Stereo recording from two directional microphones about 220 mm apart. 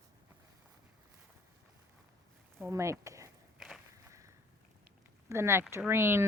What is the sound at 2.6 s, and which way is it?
Speech, 15° right (ahead or behind).